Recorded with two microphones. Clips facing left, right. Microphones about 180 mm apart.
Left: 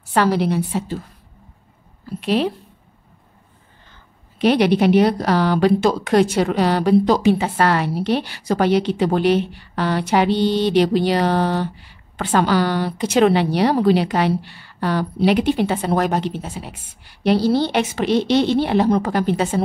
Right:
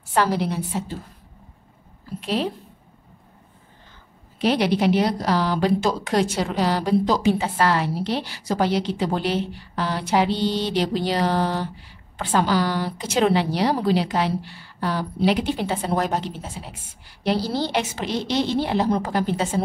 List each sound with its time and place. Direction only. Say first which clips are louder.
0.1 s a woman's voice: left 4 dB; 70° left (ahead or behind)
2.1 s a woman's voice: left 5 dB; 70° left (ahead or behind)
4.4 s a woman's voice: left 5 dB; 65° left (ahead or behind)